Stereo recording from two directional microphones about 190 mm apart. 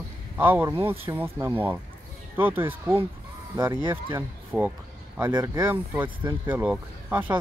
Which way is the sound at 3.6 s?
20° right (ahead or behind).